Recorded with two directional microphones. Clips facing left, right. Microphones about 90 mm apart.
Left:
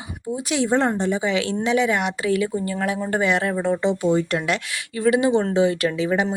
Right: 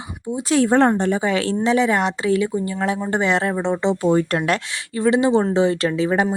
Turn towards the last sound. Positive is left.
turn(degrees=-35)  # may be behind; listen again after turning